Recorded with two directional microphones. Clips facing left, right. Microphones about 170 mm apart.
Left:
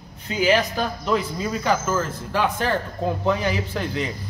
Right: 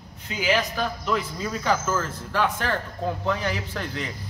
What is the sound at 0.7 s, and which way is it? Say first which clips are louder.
Speech: left 3 dB; 30° left (ahead or behind).